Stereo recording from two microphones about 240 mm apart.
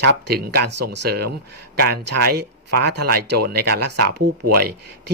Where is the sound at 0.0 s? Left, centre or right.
Right.